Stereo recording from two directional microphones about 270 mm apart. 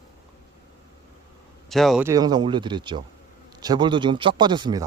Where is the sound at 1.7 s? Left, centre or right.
Centre.